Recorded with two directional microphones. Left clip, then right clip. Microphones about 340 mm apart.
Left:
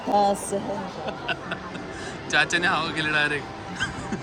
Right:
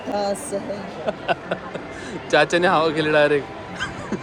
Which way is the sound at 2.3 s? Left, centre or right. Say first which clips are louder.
Right 5 dB; centre.